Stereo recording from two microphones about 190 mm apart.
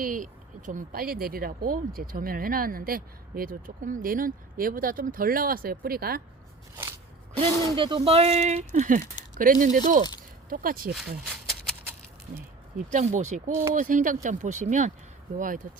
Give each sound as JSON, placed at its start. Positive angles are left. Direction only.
{"t": 0.0, "sound": "speech", "side_deg": -45}
{"t": 7.3, "sound": "speech", "side_deg": -25}
{"t": 11.3, "sound": "a sound", "side_deg": -10}
{"t": 12.9, "sound": "speech", "side_deg": -40}
{"t": 13.5, "sound": "speech", "side_deg": -15}
{"t": 13.7, "sound": "speech", "side_deg": -45}